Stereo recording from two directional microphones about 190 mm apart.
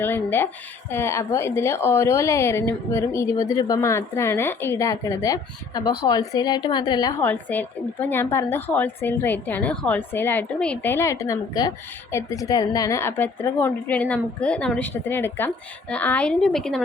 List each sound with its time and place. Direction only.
0.0 s a woman's voice: 10° left (ahead or behind)
7.2 s a woman's voice: 10° left (ahead or behind)